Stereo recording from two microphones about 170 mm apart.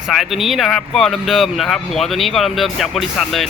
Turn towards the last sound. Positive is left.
turn(degrees=0)  # may be behind; listen again after turning